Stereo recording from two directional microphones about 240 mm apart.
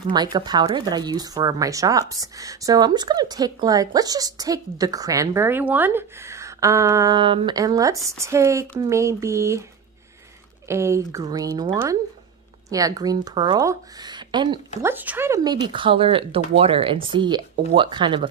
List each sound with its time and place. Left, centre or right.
0.1 s speech: centre
10.7 s speech: centre